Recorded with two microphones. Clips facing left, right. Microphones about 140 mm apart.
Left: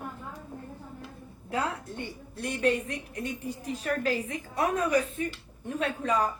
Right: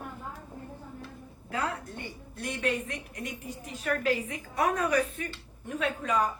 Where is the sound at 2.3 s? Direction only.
35° left (ahead or behind).